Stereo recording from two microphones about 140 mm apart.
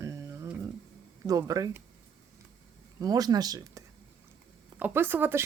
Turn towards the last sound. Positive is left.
turn(degrees=-15)  # may be behind; listen again after turning